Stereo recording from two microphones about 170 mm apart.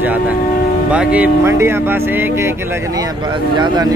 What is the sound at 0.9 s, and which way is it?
Speech, 10° right (ahead or behind).